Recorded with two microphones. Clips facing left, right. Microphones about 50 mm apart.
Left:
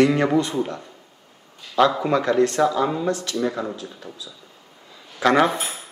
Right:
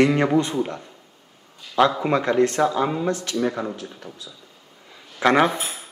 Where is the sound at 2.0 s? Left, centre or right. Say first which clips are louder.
Even; right.